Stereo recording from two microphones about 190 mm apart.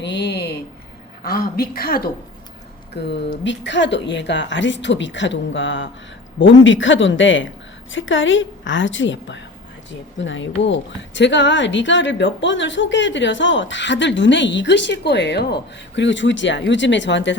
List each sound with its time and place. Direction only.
0.0 s speech: 65° left (ahead or behind)
1.2 s a woman's voice: 50° left (ahead or behind)
3.0 s speech: 65° left (ahead or behind)